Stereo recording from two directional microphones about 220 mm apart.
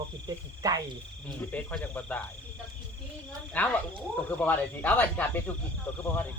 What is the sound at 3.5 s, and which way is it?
Speech, 5° left (ahead or behind).